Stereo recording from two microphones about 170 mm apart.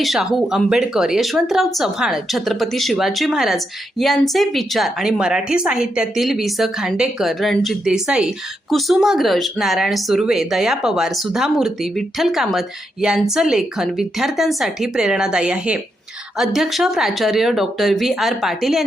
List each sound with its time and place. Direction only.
0.0 s speech: centre (ahead or behind)